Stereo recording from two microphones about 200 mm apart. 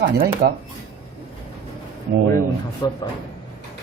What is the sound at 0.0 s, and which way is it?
Speech, 55° right (ahead or behind).